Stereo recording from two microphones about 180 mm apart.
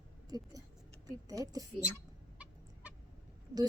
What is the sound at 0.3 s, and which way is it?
A woman's voice, 20° right (ahead or behind).